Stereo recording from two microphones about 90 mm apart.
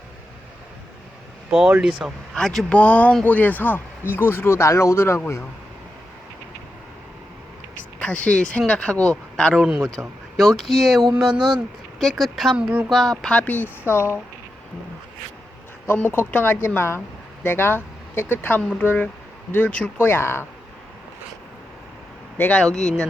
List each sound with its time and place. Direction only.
1.5 s speech: 10° right (ahead or behind)
2.3 s speech: 5° left (ahead or behind)
2.7 s speech: 15° left (ahead or behind); by 5.2 s 30° left (ahead or behind)
7.9 s speech: 10° left (ahead or behind)
9.6 s speech: 10° right (ahead or behind)
10.3 s speech: centre (ahead or behind)
12.5 s speech: 15° right (ahead or behind)
12.9 s speech: centre (ahead or behind); by 14.2 s 30° left (ahead or behind)
16.1 s speech: 20° left (ahead or behind)
20.1 s speech: 25° left (ahead or behind)
22.4 s speech: 15° left (ahead or behind)
22.6 s speech: 5° left (ahead or behind)